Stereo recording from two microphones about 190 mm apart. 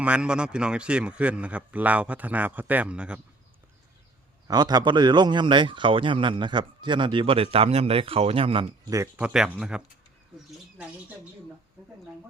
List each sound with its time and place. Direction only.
0.0 s a man's voice: 5° right (ahead or behind)
4.4 s a man's voice: 20° right (ahead or behind); by 9.8 s 5° right (ahead or behind)